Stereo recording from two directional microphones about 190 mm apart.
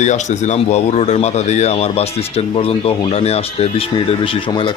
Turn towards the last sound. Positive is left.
turn(degrees=25)  # may be behind; listen again after turning